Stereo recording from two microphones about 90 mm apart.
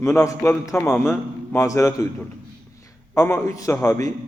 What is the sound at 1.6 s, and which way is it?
Speech, 35° left (ahead or behind).